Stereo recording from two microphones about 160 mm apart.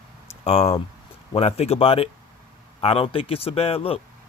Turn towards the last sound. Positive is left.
turn(degrees=35)  # may be behind; listen again after turning